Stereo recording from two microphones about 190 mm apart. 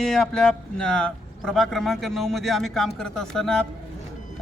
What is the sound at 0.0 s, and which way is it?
A man's voice, 5° left (ahead or behind).